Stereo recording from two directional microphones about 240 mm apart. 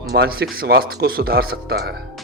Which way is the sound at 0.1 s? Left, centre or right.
Right.